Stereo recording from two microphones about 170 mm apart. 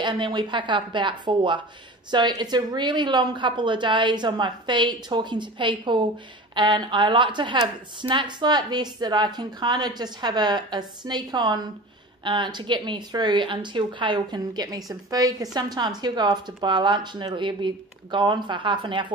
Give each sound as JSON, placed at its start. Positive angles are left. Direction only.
{"t": 0.0, "sound": "a woman's voice", "side_deg": -25}